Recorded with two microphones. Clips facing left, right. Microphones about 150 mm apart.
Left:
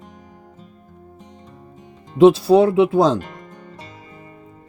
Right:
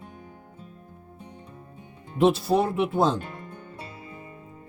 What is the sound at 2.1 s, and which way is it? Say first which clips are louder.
Speech: left 9 dB; 90° left.